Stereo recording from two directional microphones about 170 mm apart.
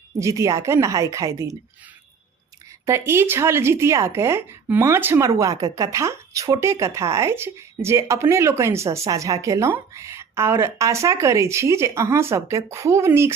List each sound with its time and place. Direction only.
0.2 s speech: 20° right (ahead or behind)
2.8 s speech: 15° right (ahead or behind)